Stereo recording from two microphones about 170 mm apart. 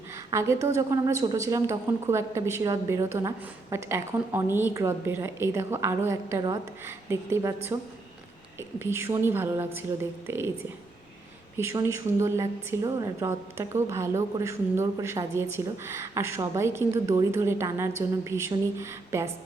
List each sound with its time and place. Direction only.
0.3 s a woman's voice: 20° right (ahead or behind)
11.5 s a woman's voice: 15° right (ahead or behind)